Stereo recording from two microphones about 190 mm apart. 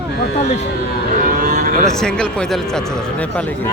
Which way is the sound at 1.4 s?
50° right (ahead or behind).